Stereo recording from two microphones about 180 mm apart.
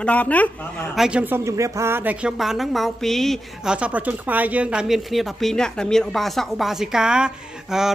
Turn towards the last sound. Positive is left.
turn(degrees=-5)  # may be behind; listen again after turning